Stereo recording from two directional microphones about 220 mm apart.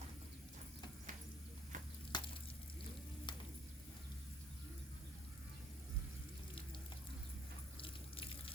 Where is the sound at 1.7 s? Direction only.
35° right (ahead or behind).